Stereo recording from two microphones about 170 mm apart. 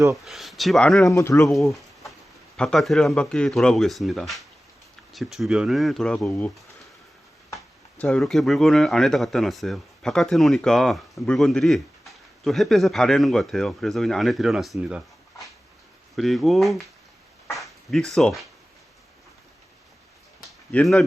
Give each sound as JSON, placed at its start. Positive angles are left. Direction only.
{"t": 0.2, "sound": "speech", "side_deg": 0}
{"t": 1.0, "sound": "speech", "side_deg": 20}
{"t": 1.7, "sound": "a sound", "side_deg": 0}
{"t": 2.6, "sound": "speech", "side_deg": 5}
{"t": 20.7, "sound": "speech", "side_deg": 5}